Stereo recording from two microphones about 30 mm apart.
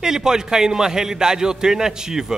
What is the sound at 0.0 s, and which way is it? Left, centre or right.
A man's voice, right.